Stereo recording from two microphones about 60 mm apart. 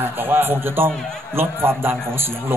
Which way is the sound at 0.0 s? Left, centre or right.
Right.